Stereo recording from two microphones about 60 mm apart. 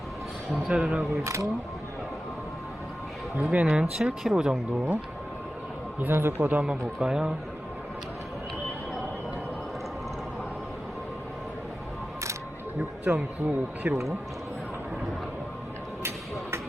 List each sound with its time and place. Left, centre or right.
0.7 s speech: right
1.2 s speech: right
3.4 s speech: right
6.0 s speech: right
6.6 s speech: centre
13.4 s speech: right